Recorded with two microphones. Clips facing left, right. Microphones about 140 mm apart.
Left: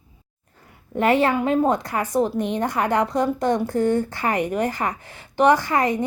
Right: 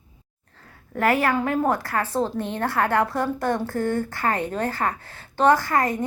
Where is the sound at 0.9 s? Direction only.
20° left (ahead or behind).